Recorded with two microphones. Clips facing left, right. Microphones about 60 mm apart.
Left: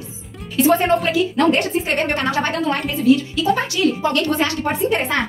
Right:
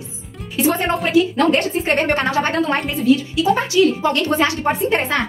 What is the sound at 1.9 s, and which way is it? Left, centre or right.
Speech, right.